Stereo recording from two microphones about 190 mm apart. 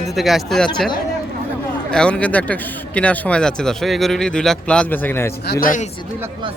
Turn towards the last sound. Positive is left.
turn(degrees=45)  # may be behind; listen again after turning